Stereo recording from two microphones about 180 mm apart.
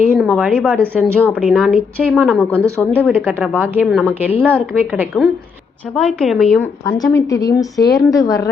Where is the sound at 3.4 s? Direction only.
10° right (ahead or behind).